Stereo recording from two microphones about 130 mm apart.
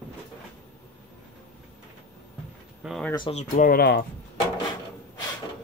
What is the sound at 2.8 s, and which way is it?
Speech, 5° right (ahead or behind).